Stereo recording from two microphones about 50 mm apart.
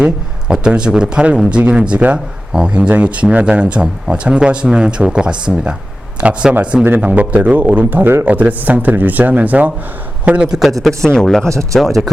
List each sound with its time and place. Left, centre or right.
0.0 s speech: centre
10.2 s speech: right
10.6 s speech: centre
11.0 s speech: centre